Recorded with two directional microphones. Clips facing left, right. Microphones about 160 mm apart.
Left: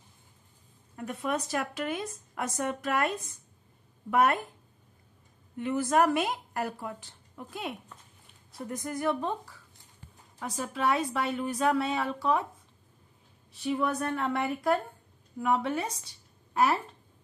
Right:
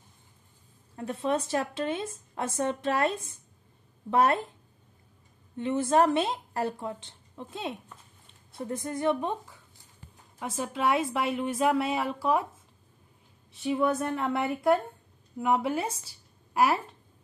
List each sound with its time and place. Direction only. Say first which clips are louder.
0.9 s speech: right 3 dB; 30° right (ahead or behind)
5.6 s speech: right 2 dB; 25° right (ahead or behind)
10.4 s a woman's voice: right 1 dB; centre (ahead or behind)
13.5 s a woman's voice: right 3 dB; centre (ahead or behind)
15.5 s speech: right 2 dB; 25° right (ahead or behind)